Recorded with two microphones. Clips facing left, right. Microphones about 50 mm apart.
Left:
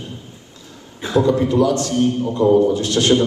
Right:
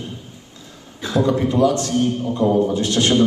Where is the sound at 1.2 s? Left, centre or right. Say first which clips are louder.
Left 1 dB; right.